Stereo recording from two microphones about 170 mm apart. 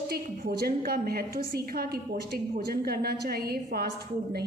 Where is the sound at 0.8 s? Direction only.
65° right (ahead or behind).